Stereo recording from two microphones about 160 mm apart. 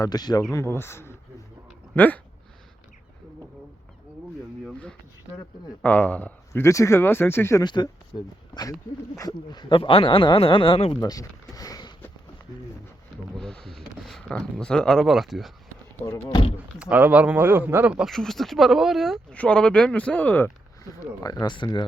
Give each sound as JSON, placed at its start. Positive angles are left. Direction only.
{"t": 0.0, "sound": "speech", "side_deg": 25}
{"t": 4.6, "sound": "a sound", "side_deg": 5}
{"t": 5.8, "sound": "speech", "side_deg": 10}
{"t": 7.6, "sound": "speech", "side_deg": 30}
{"t": 9.1, "sound": "speech", "side_deg": 25}
{"t": 11.0, "sound": "speech", "side_deg": 20}
{"t": 13.3, "sound": "a sound", "side_deg": 5}
{"t": 14.0, "sound": "speech", "side_deg": 5}
{"t": 16.3, "sound": "speech", "side_deg": 35}
{"t": 16.6, "sound": "speech", "side_deg": -10}
{"t": 17.9, "sound": "speech", "side_deg": 0}
{"t": 21.2, "sound": "speech", "side_deg": 25}